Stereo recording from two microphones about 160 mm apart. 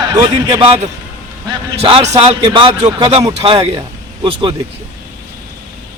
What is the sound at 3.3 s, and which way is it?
A man's voice, 40° right (ahead or behind).